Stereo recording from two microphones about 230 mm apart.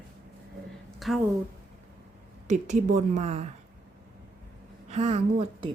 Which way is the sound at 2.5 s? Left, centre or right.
Right.